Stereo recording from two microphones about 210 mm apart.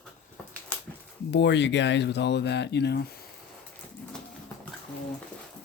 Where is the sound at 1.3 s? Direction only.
55° left (ahead or behind).